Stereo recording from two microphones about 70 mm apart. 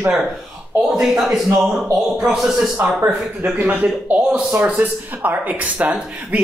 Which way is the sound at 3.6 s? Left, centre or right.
Right.